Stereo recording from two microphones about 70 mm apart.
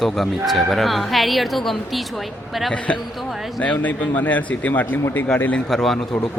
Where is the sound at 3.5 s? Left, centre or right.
Left.